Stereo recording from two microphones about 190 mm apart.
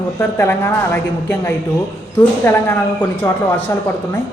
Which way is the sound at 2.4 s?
10° left (ahead or behind).